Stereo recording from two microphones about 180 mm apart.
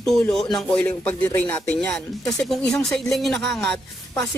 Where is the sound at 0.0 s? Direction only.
Centre (ahead or behind).